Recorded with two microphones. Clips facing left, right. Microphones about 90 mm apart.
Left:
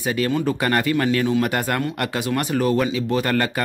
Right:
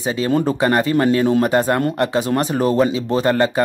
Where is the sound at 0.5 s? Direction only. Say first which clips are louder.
Right 4 dB; 20° right (ahead or behind).